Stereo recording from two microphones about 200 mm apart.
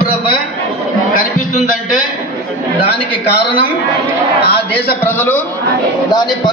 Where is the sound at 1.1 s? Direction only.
40° left (ahead or behind).